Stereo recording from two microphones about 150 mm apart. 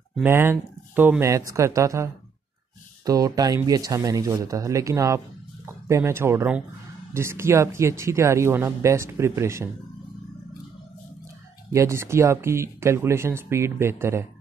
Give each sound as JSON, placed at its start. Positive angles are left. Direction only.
{"t": 0.2, "sound": "speech", "side_deg": -15}
{"t": 3.1, "sound": "speech", "side_deg": -25}
{"t": 11.7, "sound": "speech", "side_deg": -20}